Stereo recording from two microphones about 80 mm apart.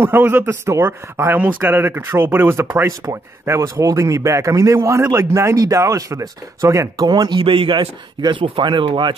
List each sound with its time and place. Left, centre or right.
0.0 s a man's voice: right
2.9 s speech: right
7.1 s speech: right